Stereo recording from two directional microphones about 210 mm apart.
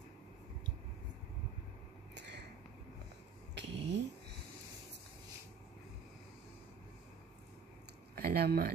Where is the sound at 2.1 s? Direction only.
55° right (ahead or behind).